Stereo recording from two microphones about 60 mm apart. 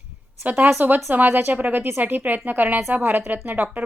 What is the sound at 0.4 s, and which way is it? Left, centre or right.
A woman's voice, right.